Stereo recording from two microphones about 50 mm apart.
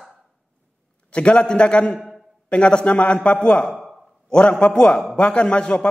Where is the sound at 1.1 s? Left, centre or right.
Left.